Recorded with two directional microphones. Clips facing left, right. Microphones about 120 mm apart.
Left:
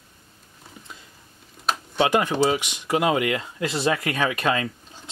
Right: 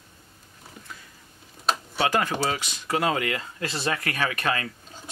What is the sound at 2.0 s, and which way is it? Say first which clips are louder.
Speech: left 6 dB; 20° left (ahead or behind).